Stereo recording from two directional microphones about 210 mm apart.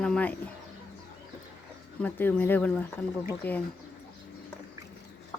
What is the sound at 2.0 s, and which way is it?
A woman's voice, 10° left (ahead or behind).